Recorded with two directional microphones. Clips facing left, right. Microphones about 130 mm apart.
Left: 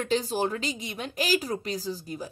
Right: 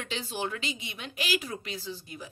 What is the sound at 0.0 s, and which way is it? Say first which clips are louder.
A woman's voice: left 8 dB; 40° left (ahead or behind).